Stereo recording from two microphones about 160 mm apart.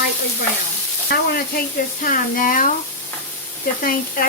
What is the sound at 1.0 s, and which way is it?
Speech, 70° left (ahead or behind).